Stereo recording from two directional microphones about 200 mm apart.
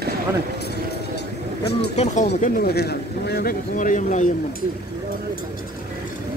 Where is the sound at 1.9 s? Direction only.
35° left (ahead or behind).